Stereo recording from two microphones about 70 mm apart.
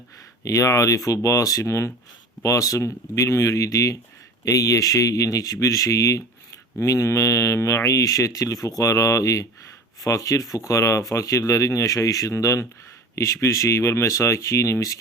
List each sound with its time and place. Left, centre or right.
0.4 s speech: left